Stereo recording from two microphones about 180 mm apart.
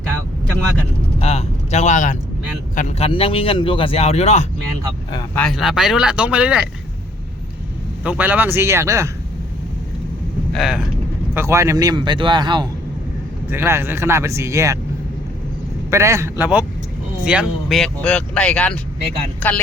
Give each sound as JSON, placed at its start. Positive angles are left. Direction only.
{"t": 1.2, "sound": "speech", "side_deg": 35}
{"t": 5.3, "sound": "speech", "side_deg": 5}
{"t": 8.0, "sound": "speech", "side_deg": -10}
{"t": 10.5, "sound": "speech", "side_deg": 0}
{"t": 11.3, "sound": "speech", "side_deg": -15}
{"t": 13.5, "sound": "speech", "side_deg": -15}
{"t": 15.9, "sound": "speech", "side_deg": -15}
{"t": 17.2, "sound": "speech", "side_deg": -5}